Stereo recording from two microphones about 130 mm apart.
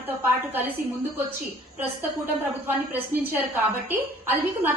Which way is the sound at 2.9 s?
15° right (ahead or behind).